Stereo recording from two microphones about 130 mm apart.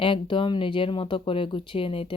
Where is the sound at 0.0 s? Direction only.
40° left (ahead or behind).